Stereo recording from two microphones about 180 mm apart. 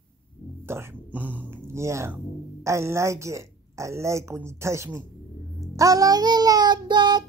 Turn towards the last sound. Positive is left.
turn(degrees=-25)  # may be behind; listen again after turning